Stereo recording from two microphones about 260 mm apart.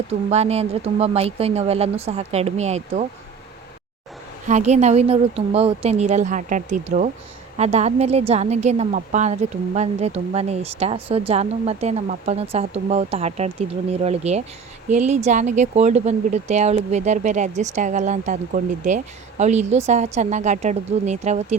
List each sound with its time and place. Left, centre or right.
0.3 s speech: right
4.4 s speech: right